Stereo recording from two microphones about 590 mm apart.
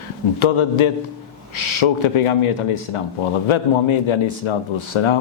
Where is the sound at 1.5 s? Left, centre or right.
Left.